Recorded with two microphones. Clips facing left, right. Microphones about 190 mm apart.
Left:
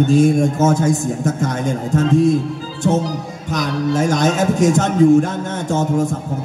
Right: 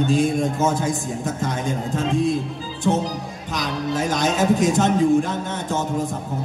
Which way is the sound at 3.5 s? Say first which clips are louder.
Left 6 dB; 45° left (ahead or behind).